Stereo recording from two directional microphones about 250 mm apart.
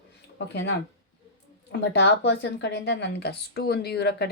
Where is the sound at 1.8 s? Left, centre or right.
Left.